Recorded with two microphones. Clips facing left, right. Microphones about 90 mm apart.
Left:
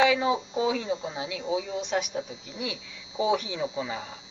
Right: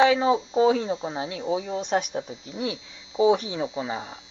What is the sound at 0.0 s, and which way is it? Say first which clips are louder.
Speech: right 4 dB; 35° right (ahead or behind).